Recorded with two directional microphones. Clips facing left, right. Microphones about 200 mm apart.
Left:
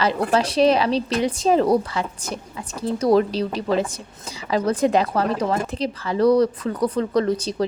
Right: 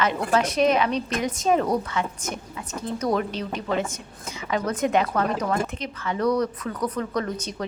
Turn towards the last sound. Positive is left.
turn(degrees=30)  # may be behind; listen again after turning